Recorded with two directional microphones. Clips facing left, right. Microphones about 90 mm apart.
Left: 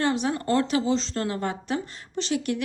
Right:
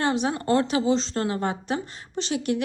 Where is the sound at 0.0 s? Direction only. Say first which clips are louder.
Right 1 dB; 20° right (ahead or behind).